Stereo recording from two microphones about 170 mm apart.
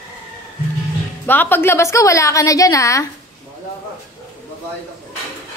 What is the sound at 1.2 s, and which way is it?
A woman's voice, 10° left (ahead or behind).